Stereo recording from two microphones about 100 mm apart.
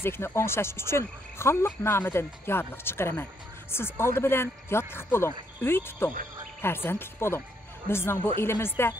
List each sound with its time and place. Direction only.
0.0 s speech: 25° left (ahead or behind)